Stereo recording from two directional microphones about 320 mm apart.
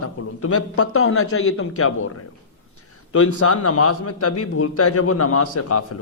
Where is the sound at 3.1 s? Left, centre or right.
Left.